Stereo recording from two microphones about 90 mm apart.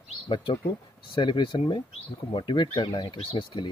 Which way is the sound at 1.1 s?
60° left (ahead or behind).